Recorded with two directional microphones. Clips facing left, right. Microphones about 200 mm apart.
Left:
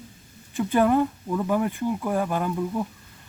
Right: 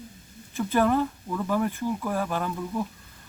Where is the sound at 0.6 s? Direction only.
15° left (ahead or behind).